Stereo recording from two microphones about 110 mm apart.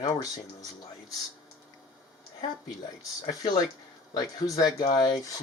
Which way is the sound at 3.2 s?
40° left (ahead or behind).